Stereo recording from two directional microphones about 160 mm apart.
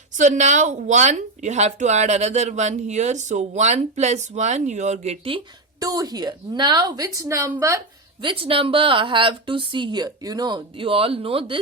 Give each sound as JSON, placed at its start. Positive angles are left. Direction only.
{"t": 0.2, "sound": "speech", "side_deg": -50}
{"t": 5.8, "sound": "a woman's voice", "side_deg": -25}
{"t": 8.2, "sound": "a woman's voice", "side_deg": -35}